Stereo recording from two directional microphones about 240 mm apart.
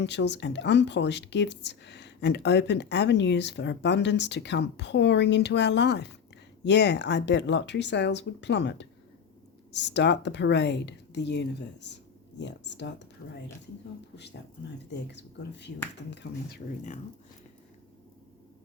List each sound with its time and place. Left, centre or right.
0.0 s speech: left
15.0 s speech: left